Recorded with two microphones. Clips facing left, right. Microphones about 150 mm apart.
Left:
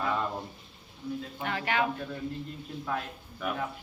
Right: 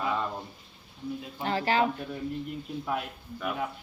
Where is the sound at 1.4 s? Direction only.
30° right (ahead or behind).